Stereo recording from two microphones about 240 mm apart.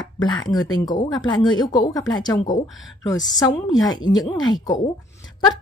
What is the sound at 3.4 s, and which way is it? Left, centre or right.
A woman's voice, centre.